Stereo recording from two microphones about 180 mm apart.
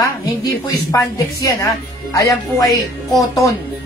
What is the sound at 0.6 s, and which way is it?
Speech, 20° left (ahead or behind).